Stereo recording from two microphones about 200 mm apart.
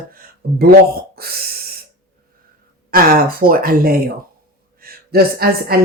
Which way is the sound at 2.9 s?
45° right (ahead or behind).